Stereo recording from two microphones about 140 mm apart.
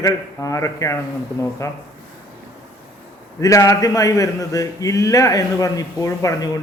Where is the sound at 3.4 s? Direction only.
25° left (ahead or behind).